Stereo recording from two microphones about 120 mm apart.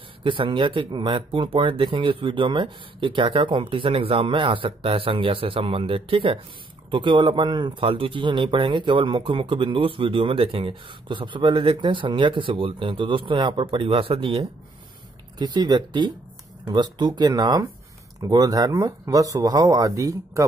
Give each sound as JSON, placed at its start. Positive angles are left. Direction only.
{"t": 0.2, "sound": "speech", "side_deg": -45}
{"t": 15.3, "sound": "speech", "side_deg": -35}